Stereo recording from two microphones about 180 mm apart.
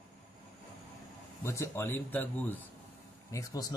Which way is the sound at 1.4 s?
15° left (ahead or behind).